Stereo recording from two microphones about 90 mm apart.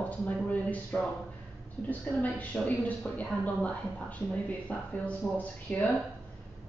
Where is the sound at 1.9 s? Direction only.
20° left (ahead or behind).